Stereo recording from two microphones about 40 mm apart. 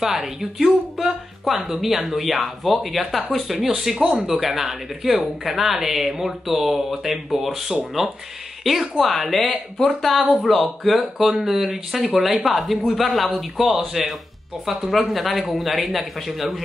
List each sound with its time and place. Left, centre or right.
0.0 s speech: centre